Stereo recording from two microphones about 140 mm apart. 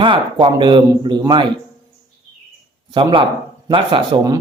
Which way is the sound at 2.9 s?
35° right (ahead or behind).